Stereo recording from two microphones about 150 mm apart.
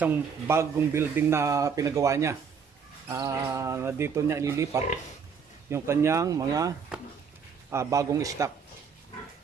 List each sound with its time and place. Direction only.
0.0 s speech: 15° right (ahead or behind)
6.9 s a sound: 5° right (ahead or behind)
7.7 s speech: 20° right (ahead or behind)